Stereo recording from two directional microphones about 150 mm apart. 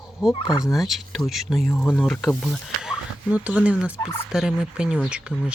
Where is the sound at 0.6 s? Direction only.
Centre (ahead or behind).